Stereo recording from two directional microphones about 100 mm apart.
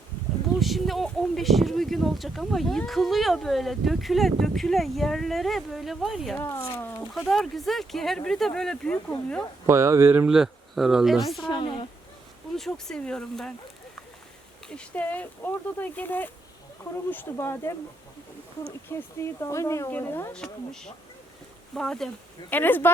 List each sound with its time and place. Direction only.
0.6 s speech: centre (ahead or behind)
6.3 s speech: 25° left (ahead or behind)
7.3 s speech: centre (ahead or behind)
9.6 s speech: 30° right (ahead or behind)
10.2 s speech: 5° right (ahead or behind)
11.4 s speech: 55° left (ahead or behind)
12.5 s speech: 5° left (ahead or behind)
14.7 s speech: 15° left (ahead or behind)
19.2 s speech: 30° left (ahead or behind)
19.9 s speech: 20° left (ahead or behind)
20.3 s speech: 10° left (ahead or behind)
22.4 s speech: 20° left (ahead or behind)